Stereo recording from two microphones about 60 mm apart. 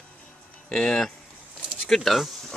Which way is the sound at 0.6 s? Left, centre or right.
Centre.